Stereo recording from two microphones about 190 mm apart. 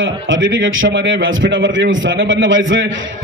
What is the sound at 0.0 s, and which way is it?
A man's voice, 80° right.